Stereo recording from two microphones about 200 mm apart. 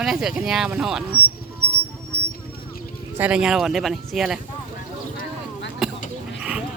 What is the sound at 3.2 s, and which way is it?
Speech, 5° right (ahead or behind).